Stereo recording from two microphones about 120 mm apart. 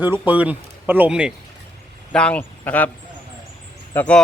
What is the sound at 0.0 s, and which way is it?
Speech, 15° right (ahead or behind).